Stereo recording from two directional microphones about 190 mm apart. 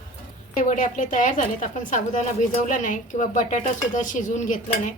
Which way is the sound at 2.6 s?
40° left (ahead or behind).